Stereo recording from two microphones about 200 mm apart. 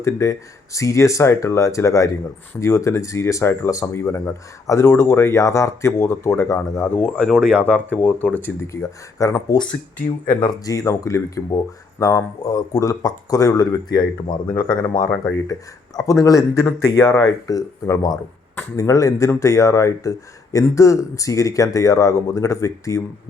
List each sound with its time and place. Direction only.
0.0 s speech: 15° left (ahead or behind)